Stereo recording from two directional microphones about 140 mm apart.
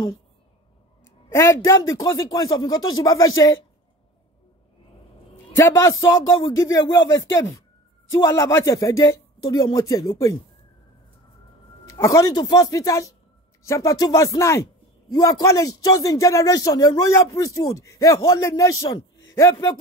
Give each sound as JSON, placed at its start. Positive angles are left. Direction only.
{"t": 1.3, "sound": "a man's voice", "side_deg": 20}
{"t": 5.6, "sound": "a man's voice", "side_deg": 25}
{"t": 11.8, "sound": "a man's voice", "side_deg": 20}